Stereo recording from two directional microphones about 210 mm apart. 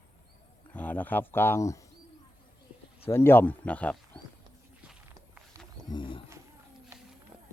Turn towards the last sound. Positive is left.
turn(degrees=20)  # may be behind; listen again after turning